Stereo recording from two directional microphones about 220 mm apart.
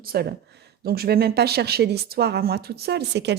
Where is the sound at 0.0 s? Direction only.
45° right (ahead or behind).